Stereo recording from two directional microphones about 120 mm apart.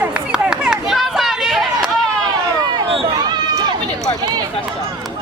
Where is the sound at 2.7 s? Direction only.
35° right (ahead or behind).